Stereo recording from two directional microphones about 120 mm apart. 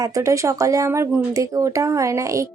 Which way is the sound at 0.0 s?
25° right (ahead or behind).